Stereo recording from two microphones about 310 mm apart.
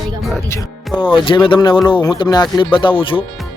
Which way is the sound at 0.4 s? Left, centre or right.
Centre.